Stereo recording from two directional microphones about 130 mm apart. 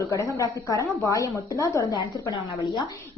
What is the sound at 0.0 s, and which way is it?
A woman's voice, 25° left (ahead or behind).